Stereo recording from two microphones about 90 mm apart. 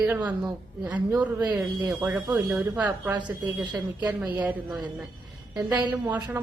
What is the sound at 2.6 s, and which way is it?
Speech, 20° right (ahead or behind).